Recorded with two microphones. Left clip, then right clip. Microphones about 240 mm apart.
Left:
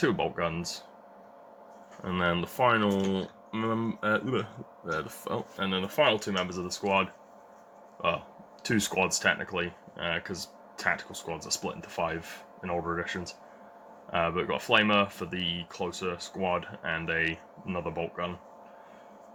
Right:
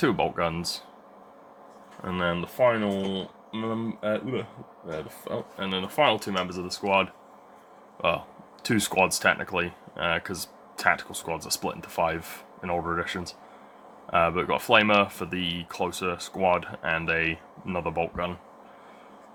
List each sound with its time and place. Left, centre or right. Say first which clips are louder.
0.0 s speech: right 3 dB; centre
2.0 s speech: right 1 dB; centre
5.5 s speech: right 2 dB; centre; by 18.3 s right